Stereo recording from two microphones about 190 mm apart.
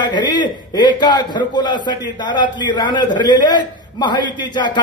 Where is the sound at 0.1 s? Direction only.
20° left (ahead or behind).